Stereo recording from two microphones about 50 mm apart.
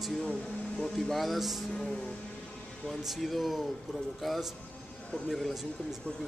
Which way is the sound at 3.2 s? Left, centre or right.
Centre.